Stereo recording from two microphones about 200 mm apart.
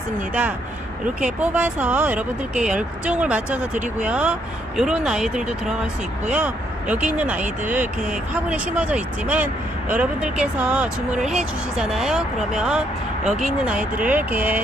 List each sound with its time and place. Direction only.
1.2 s speech: 5° right (ahead or behind)
7.3 s speech: 40° right (ahead or behind)
7.7 s speech: 10° right (ahead or behind)